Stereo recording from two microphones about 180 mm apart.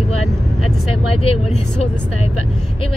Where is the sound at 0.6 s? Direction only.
35° left (ahead or behind).